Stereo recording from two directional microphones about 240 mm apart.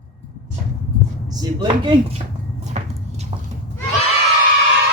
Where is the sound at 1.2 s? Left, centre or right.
Centre.